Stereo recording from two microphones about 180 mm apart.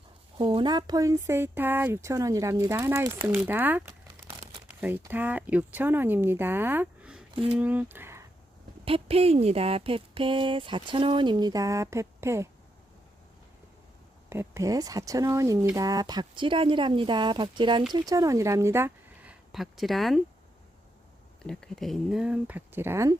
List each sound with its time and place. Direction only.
0.3 s speech: 25° right (ahead or behind); by 8.2 s 10° right (ahead or behind)
8.8 s speech: 30° right (ahead or behind); by 12.5 s 15° right (ahead or behind)
14.3 s speech: 15° right (ahead or behind); by 20.2 s centre (ahead or behind)
21.4 s speech: 5° left (ahead or behind); by 23.1 s 15° right (ahead or behind)